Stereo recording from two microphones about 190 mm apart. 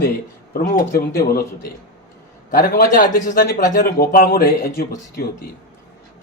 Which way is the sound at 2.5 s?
50° left (ahead or behind).